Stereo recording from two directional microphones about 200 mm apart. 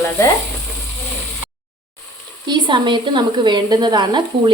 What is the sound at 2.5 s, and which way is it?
A woman's voice, 20° right (ahead or behind).